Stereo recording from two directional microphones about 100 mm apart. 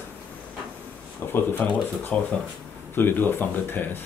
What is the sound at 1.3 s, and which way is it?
Speech, 20° left (ahead or behind).